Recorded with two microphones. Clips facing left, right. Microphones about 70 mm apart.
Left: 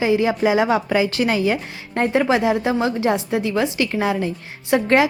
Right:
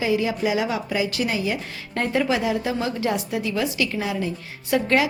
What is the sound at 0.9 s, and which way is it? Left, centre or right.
Speech, left.